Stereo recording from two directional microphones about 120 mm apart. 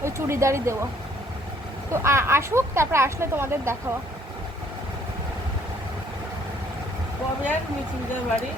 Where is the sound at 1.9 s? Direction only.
20° right (ahead or behind).